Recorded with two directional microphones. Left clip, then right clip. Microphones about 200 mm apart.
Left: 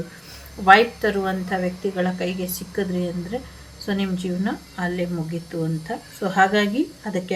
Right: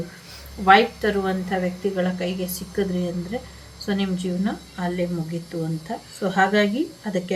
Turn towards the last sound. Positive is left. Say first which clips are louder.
# even
turn(degrees=5)  # may be behind; listen again after turning